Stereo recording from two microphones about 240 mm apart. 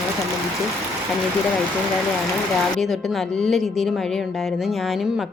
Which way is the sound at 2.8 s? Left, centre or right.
Centre.